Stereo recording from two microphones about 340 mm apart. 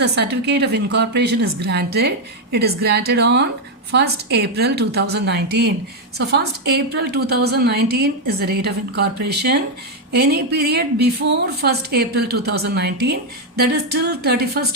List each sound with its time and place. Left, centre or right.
0.0 s a woman's voice: right